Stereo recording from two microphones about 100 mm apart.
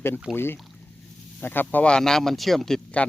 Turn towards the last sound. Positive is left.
turn(degrees=10)  # may be behind; listen again after turning